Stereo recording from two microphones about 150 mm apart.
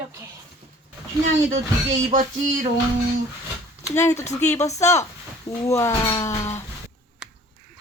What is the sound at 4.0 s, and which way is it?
Speech, 20° left (ahead or behind).